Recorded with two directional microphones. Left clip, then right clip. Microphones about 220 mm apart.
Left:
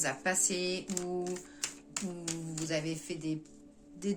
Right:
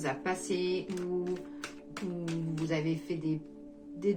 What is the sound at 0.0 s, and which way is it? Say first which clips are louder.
A woman's voice: left 1 dB; 40° left (ahead or behind).